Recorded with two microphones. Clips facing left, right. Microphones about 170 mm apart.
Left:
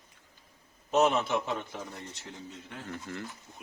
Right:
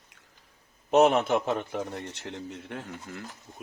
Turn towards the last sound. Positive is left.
turn(degrees=-5)  # may be behind; listen again after turning